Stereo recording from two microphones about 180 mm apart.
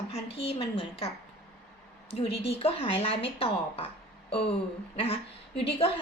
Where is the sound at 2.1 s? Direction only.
35° left (ahead or behind).